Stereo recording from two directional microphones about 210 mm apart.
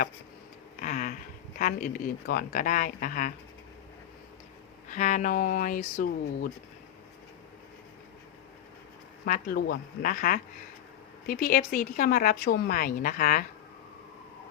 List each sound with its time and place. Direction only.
0.8 s a sound: 40° left (ahead or behind)
1.5 s speech: 40° left (ahead or behind)
4.9 s speech: 35° left (ahead or behind)
9.2 s speech: 40° left (ahead or behind)